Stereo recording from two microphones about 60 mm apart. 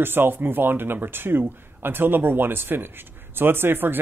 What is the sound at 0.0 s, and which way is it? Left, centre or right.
Speech, right.